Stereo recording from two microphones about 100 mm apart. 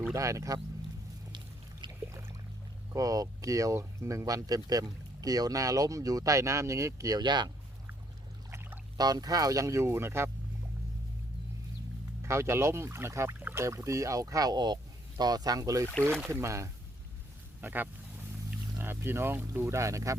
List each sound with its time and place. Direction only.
0.1 s speech: 30° right (ahead or behind)
1.8 s a sound: 55° right (ahead or behind)
2.9 s speech: 35° right (ahead or behind)
9.0 s speech: 40° right (ahead or behind); by 10.2 s 25° right (ahead or behind)
12.2 s speech: 25° right (ahead or behind)
17.6 s speech: 20° right (ahead or behind)